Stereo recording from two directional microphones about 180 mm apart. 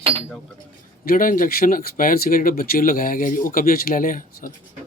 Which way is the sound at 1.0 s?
50° left (ahead or behind).